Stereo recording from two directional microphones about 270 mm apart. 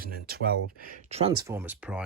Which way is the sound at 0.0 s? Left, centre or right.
Right.